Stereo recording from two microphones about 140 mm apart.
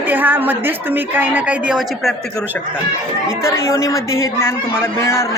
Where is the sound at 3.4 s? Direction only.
20° left (ahead or behind).